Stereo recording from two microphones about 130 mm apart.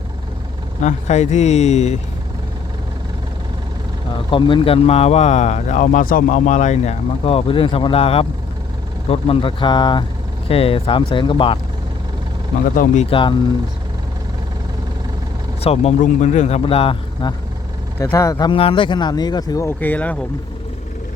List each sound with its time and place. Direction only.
0.8 s speech: 65° left (ahead or behind)
4.3 s speech: 40° left (ahead or behind)
10.5 s speech: 45° left (ahead or behind)
12.7 s speech: 80° left
13.1 s speech: 40° left (ahead or behind)
15.6 s speech: 50° left (ahead or behind)
16.6 s speech: 45° left (ahead or behind)
18.0 s speech: 25° left (ahead or behind)
19.6 s speech: 15° left (ahead or behind)